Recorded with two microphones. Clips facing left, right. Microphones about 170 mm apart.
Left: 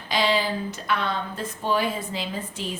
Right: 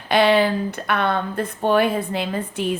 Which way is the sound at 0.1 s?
60° right (ahead or behind).